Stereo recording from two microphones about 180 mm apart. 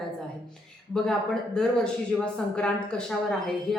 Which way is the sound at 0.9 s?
5° left (ahead or behind).